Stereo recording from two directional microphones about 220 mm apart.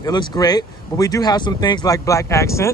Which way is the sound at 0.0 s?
20° left (ahead or behind).